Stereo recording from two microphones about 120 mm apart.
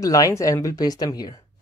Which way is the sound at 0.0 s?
30° left (ahead or behind).